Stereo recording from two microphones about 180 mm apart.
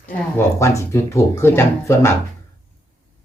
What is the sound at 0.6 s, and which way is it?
Speech, 15° left (ahead or behind).